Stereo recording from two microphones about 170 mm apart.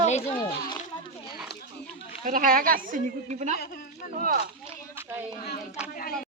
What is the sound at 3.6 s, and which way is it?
Speech, 65° left (ahead or behind).